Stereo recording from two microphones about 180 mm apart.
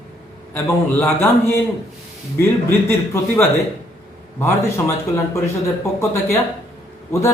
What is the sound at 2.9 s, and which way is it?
A man's voice, 15° left (ahead or behind).